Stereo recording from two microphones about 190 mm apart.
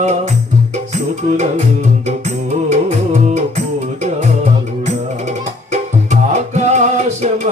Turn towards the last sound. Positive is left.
turn(degrees=-40)  # may be behind; listen again after turning